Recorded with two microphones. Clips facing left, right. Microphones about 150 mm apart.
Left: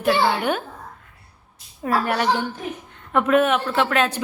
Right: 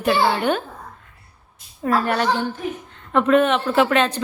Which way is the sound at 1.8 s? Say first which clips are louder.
Right 2 dB; 5° left (ahead or behind).